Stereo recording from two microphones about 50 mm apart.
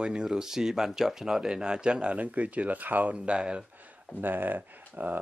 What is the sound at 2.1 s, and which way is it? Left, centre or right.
Speech, right.